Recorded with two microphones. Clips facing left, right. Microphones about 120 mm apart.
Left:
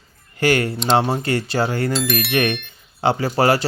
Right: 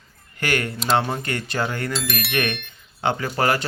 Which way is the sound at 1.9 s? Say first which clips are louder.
Left 6 dB; centre (ahead or behind).